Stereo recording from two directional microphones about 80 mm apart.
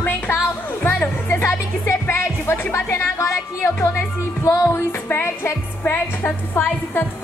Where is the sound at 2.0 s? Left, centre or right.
Left.